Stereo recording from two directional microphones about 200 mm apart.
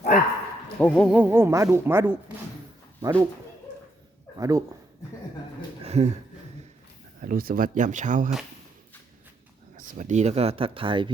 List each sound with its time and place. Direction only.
0.8 s speech: 5° left (ahead or behind)
1.1 s speech: 10° right (ahead or behind)
4.4 s speech: 15° right (ahead or behind)
5.8 s a sound: 30° right (ahead or behind)
7.2 s speech: 45° right (ahead or behind)
9.7 s speech: 40° right (ahead or behind); by 11.1 s 25° right (ahead or behind)